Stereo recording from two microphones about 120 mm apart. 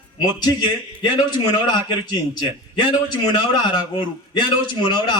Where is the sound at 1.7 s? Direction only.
40° left (ahead or behind).